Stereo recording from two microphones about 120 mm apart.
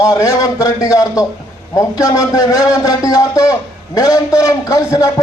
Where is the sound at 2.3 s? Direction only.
30° left (ahead or behind).